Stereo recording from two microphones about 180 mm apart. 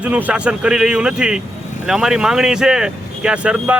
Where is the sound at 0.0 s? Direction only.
5° right (ahead or behind).